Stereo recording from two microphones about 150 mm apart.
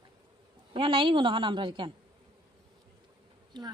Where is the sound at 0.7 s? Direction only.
35° right (ahead or behind).